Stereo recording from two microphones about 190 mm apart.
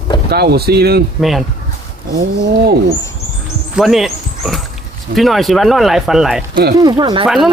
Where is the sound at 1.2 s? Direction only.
Centre (ahead or behind).